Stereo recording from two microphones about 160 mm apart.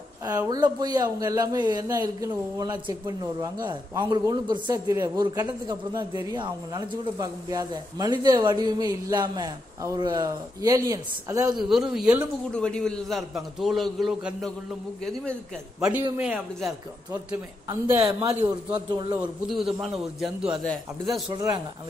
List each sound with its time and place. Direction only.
0.5 s speech: 25° right (ahead or behind)
11.4 s a man's voice: centre (ahead or behind)
12.5 s a man's voice: 5° left (ahead or behind)
15.8 s a man's voice: 10° right (ahead or behind)
17.6 s speech: 25° right (ahead or behind)
19.1 s a man's voice: 5° right (ahead or behind)
21.3 s speech: 20° right (ahead or behind)